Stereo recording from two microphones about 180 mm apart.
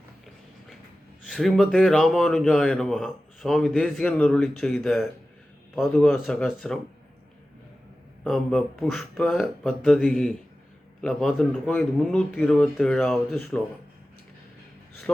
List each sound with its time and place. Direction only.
1.3 s a man's voice: centre (ahead or behind)
8.2 s a man's voice: 5° left (ahead or behind)